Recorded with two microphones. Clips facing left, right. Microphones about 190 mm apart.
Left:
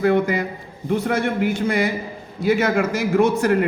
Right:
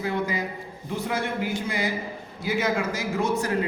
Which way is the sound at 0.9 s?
60° left (ahead or behind).